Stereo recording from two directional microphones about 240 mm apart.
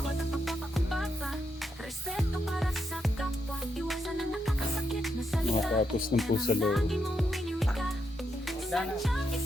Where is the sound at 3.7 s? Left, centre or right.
Centre.